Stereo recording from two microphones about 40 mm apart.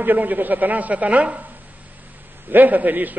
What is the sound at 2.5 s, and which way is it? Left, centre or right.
Speech, right.